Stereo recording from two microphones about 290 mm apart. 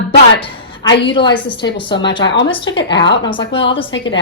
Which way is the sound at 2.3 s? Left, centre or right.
Left.